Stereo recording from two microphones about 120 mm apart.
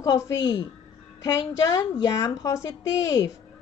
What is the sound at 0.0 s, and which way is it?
A woman's voice, 30° left (ahead or behind).